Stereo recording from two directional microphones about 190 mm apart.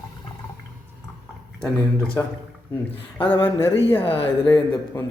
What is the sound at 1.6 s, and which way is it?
Speech, 5° left (ahead or behind).